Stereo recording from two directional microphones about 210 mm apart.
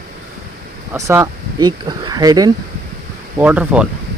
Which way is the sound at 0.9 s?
15° right (ahead or behind).